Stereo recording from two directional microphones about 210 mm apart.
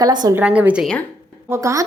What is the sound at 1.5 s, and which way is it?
Speech, 15° right (ahead or behind).